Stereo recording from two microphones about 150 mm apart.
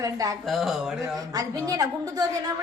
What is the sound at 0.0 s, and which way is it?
Speech, 25° right (ahead or behind).